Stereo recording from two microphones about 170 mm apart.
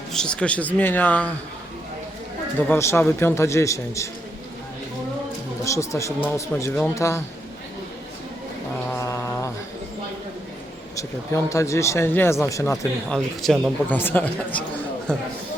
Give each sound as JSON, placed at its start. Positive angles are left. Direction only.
{"t": 0.1, "sound": "speech", "side_deg": 5}
{"t": 2.6, "sound": "speech", "side_deg": 15}
{"t": 5.6, "sound": "speech", "side_deg": 15}
{"t": 8.9, "sound": "a sound", "side_deg": 20}
{"t": 11.4, "sound": "speech", "side_deg": 20}
{"t": 13.1, "sound": "speech", "side_deg": 0}